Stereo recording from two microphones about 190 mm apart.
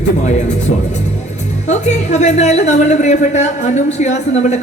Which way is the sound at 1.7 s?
40° left (ahead or behind).